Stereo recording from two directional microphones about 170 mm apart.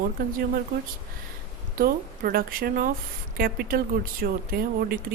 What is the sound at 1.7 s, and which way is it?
Speech, 60° right (ahead or behind).